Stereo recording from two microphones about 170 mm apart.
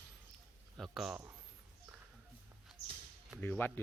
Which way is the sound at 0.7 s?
Centre (ahead or behind).